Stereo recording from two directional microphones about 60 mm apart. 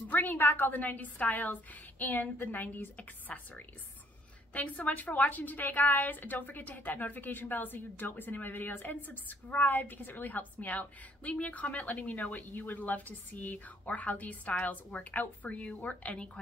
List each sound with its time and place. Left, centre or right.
0.1 s a woman's voice: left